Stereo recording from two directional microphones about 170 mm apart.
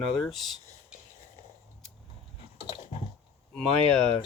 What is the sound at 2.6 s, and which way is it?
Biting, 35° left (ahead or behind).